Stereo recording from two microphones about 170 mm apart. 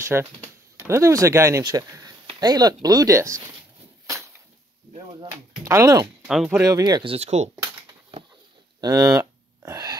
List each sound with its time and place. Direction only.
0.0 s speech: 15° right (ahead or behind)
4.9 s a sound: 30° right (ahead or behind)
5.6 s speech: 20° right (ahead or behind)
6.2 s speech: centre (ahead or behind)
6.6 s speech: 20° right (ahead or behind); by 7.5 s 40° right (ahead or behind)
8.8 s a sound: 20° right (ahead or behind)